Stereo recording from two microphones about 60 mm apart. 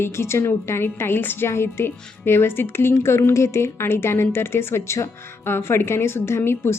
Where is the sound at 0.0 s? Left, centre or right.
Left.